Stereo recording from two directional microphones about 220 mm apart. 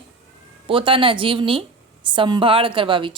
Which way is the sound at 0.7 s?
25° right (ahead or behind).